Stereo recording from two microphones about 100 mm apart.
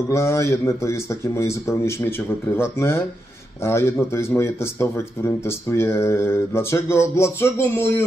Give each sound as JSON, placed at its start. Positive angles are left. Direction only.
{"t": 0.1, "sound": "speech", "side_deg": 30}